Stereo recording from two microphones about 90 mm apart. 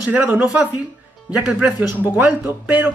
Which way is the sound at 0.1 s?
20° right (ahead or behind).